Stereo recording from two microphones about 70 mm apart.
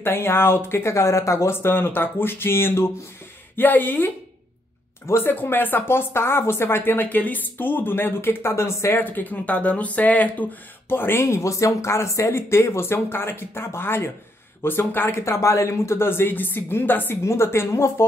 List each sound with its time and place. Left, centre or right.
0.0 s speech: left
9.0 s speech: left
15.2 s speech: left
17.2 s speech: left